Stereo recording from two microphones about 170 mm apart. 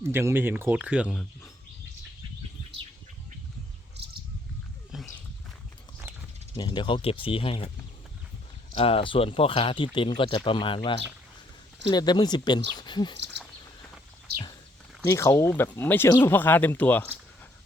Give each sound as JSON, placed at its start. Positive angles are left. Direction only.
{"t": 0.1, "sound": "speech", "side_deg": -15}
{"t": 4.9, "sound": "a sound", "side_deg": 0}
{"t": 6.6, "sound": "speech", "side_deg": 30}
{"t": 8.7, "sound": "speech", "side_deg": 35}
{"t": 15.0, "sound": "speech", "side_deg": 15}